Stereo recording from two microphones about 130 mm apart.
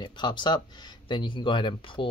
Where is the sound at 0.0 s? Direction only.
35° left (ahead or behind).